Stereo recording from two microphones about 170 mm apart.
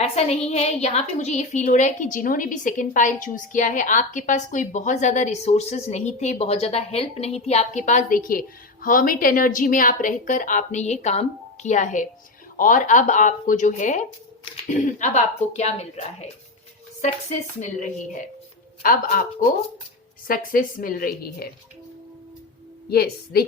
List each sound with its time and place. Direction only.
0.0 s a woman's voice: 40° left (ahead or behind)
17.6 s a woman's voice: 50° left (ahead or behind)
22.9 s a woman's voice: 65° left (ahead or behind)